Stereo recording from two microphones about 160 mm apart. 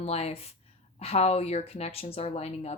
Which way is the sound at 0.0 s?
40° left (ahead or behind).